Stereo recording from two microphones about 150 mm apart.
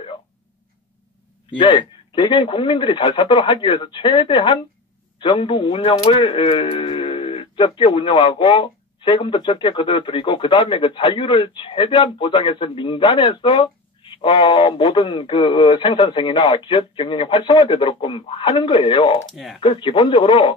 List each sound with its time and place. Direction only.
1.6 s speech: 30° left (ahead or behind)
19.3 s speech: centre (ahead or behind)
19.6 s speech: 35° left (ahead or behind)